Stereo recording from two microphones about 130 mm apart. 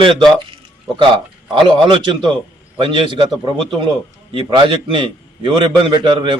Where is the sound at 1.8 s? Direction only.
40° right (ahead or behind).